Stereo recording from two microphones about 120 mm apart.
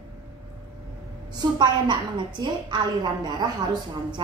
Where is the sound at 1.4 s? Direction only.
40° right (ahead or behind).